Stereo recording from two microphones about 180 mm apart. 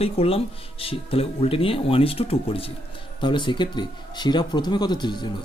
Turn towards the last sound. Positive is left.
turn(degrees=25)  # may be behind; listen again after turning